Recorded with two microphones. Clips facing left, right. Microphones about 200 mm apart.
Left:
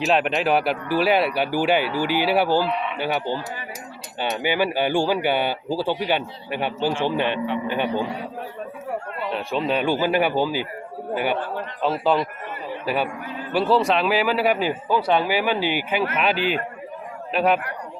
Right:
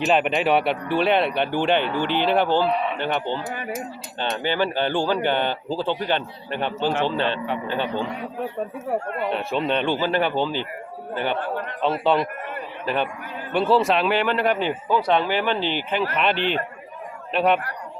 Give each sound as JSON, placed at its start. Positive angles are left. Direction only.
{"t": 0.0, "sound": "speech", "side_deg": 0}
{"t": 2.6, "sound": "a man's voice", "side_deg": -40}
{"t": 3.0, "sound": "speech", "side_deg": 10}
{"t": 9.3, "sound": "a man's voice", "side_deg": 0}